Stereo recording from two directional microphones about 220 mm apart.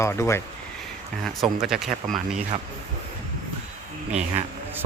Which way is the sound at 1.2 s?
Centre (ahead or behind).